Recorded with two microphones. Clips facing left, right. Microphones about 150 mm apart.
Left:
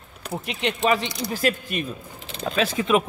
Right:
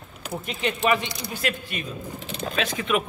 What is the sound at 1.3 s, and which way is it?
Speech, 40° left (ahead or behind).